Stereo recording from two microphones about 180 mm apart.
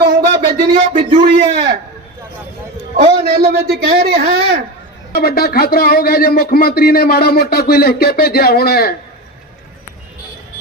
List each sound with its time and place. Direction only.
0.7 s a man's voice: 30° right (ahead or behind)
2.9 s a man's voice: 50° right (ahead or behind)
5.1 s speech: 60° left (ahead or behind)